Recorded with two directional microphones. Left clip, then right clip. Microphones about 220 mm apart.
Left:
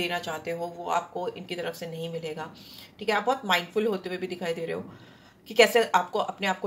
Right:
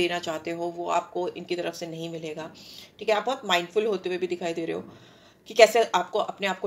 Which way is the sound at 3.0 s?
35° right (ahead or behind).